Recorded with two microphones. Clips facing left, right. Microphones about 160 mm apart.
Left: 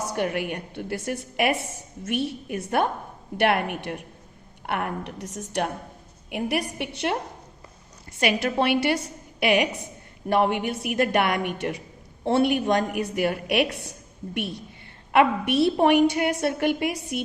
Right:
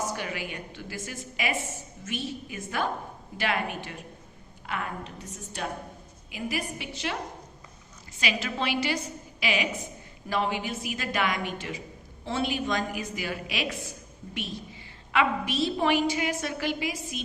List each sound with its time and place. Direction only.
0.2 s a woman's voice: 60° left (ahead or behind)
8.2 s a woman's voice: 55° left (ahead or behind)